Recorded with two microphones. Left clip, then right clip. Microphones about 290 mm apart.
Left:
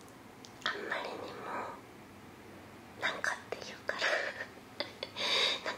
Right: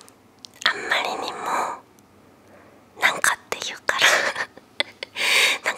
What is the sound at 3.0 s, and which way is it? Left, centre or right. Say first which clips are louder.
Whispering: right 15 dB; right.